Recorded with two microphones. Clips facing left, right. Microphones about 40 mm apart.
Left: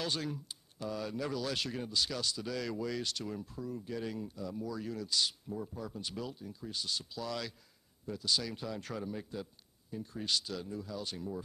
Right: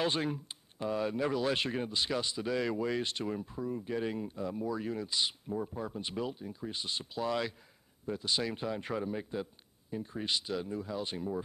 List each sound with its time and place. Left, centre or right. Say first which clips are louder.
0.0 s speech: right 5 dB; right